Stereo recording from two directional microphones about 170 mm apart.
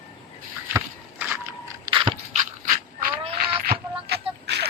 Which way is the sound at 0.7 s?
15° right (ahead or behind).